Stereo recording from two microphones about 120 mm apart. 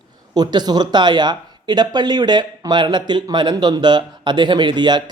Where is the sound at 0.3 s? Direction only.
35° right (ahead or behind).